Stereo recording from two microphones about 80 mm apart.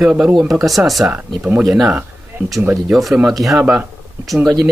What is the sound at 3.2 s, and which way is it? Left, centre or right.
Speech, centre.